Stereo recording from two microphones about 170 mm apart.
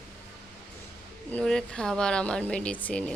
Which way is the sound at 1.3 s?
5° left (ahead or behind).